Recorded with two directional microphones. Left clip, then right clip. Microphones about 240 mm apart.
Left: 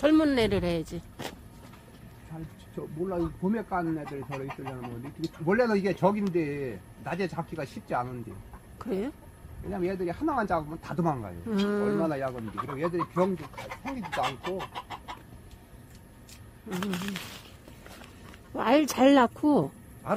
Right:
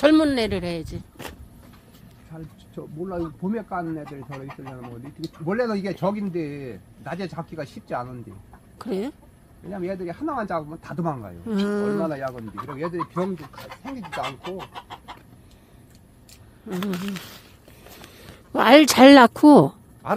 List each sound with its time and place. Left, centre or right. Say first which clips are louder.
0.0 s speech: right 6 dB; right
0.3 s speech: right 2 dB; centre
0.9 s vehicle: right 1 dB; centre
2.3 s speech: right 2 dB; right
8.7 s speech: right 4 dB; centre
11.5 s speech: right 3 dB; centre
12.1 s speech: right 2 dB; right
14.2 s speech: even; centre
18.0 s speech: right 4 dB; right